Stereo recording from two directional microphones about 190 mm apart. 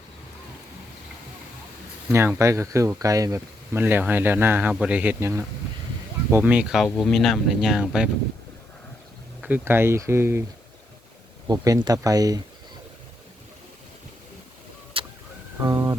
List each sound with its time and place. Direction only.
2.1 s speech: 15° right (ahead or behind)
9.4 s speech: 10° right (ahead or behind)
11.4 s speech: 20° right (ahead or behind)
15.0 s vehicle: 30° right (ahead or behind)
15.6 s a sound: 20° right (ahead or behind)